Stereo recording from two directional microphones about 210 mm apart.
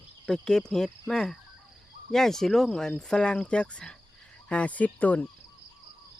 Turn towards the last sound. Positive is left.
turn(degrees=5)  # may be behind; listen again after turning